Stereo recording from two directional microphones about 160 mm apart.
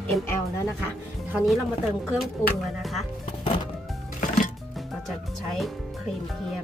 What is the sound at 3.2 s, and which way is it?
Music, 35° left (ahead or behind).